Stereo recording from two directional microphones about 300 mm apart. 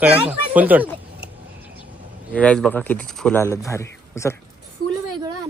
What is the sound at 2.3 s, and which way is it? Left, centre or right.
Speech, centre.